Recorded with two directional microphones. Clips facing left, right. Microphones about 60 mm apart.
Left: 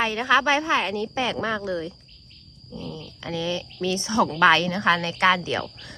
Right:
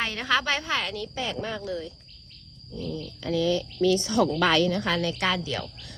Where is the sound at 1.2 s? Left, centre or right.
Left.